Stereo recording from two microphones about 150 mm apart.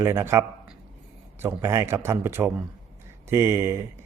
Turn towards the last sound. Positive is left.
turn(degrees=-20)  # may be behind; listen again after turning